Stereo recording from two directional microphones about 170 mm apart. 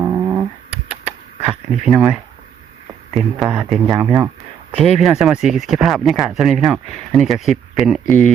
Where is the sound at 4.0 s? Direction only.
20° right (ahead or behind).